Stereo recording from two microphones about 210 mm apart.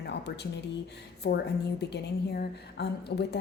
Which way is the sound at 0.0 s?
55° left (ahead or behind).